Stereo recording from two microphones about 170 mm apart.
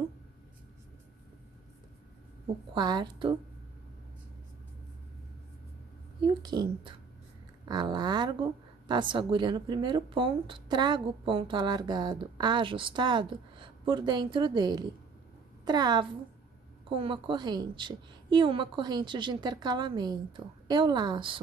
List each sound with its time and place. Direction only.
2.7 s a woman's voice: 25° right (ahead or behind)
6.2 s a woman's voice: 25° right (ahead or behind)